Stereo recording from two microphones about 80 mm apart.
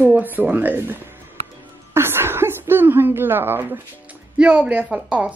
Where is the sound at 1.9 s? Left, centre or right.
Right.